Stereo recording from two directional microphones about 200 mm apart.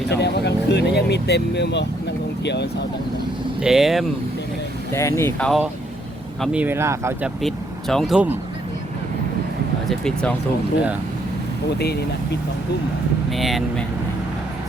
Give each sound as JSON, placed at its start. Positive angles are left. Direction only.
{"t": 0.1, "sound": "speech", "side_deg": 55}
{"t": 3.6, "sound": "speech", "side_deg": 0}
{"t": 4.9, "sound": "speech", "side_deg": 15}
{"t": 6.4, "sound": "speech", "side_deg": -5}
{"t": 7.4, "sound": "speech", "side_deg": 0}
{"t": 9.9, "sound": "speech", "side_deg": 5}
{"t": 11.8, "sound": "speech", "side_deg": 55}
{"t": 13.3, "sound": "speech", "side_deg": 0}